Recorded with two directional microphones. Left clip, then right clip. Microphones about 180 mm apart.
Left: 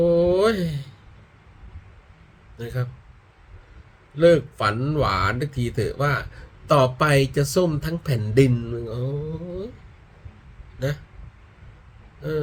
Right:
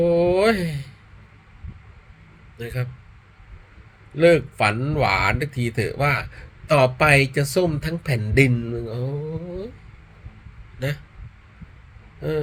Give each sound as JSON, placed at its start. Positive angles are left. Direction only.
{"t": 0.0, "sound": "a sound", "side_deg": 15}
{"t": 2.6, "sound": "speech", "side_deg": 15}
{"t": 4.2, "sound": "speech", "side_deg": 15}
{"t": 10.8, "sound": "speech", "side_deg": 15}